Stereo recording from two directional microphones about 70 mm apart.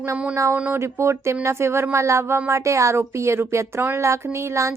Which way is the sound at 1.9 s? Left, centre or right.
Right.